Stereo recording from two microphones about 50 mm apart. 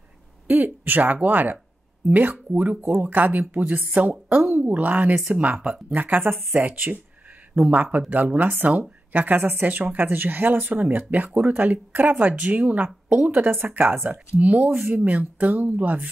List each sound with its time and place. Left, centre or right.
0.5 s speech: right
13.3 s speech: right